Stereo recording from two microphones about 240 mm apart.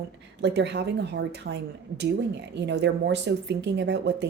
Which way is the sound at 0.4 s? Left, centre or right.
Right.